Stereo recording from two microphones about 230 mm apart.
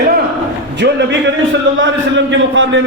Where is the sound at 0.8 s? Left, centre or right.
Right.